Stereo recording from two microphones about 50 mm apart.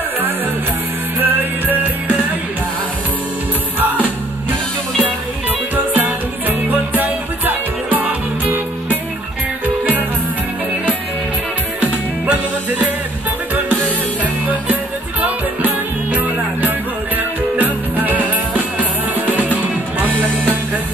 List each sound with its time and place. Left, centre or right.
1.2 s music: right
5.9 s music: right
11.8 s music: right
15.2 s music: right